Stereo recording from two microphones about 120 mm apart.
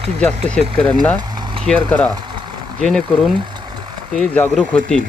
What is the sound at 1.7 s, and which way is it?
Speech, 10° left (ahead or behind).